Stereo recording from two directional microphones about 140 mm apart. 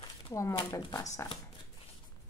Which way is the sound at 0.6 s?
25° left (ahead or behind).